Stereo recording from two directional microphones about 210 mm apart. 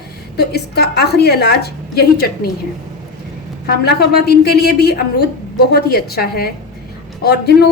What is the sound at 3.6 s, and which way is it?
A woman's voice, 50° left (ahead or behind).